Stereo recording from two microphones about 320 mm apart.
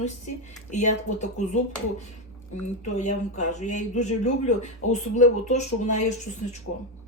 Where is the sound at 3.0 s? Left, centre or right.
Left.